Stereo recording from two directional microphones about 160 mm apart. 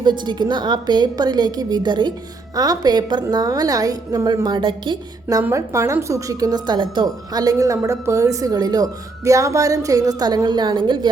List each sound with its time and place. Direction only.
0.0 s a woman's voice: 30° right (ahead or behind)
5.4 s a woman's voice: 15° right (ahead or behind)